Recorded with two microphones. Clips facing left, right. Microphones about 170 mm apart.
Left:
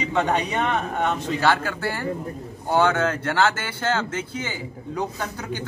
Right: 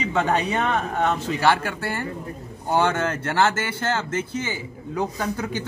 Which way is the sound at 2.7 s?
10° right (ahead or behind).